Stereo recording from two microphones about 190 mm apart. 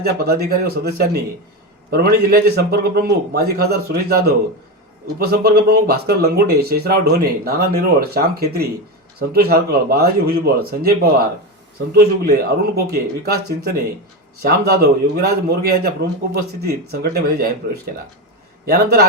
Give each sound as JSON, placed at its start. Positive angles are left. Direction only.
{"t": 0.0, "sound": "speech", "side_deg": -55}
{"t": 14.4, "sound": "speech", "side_deg": -55}
{"t": 16.9, "sound": "speech", "side_deg": -55}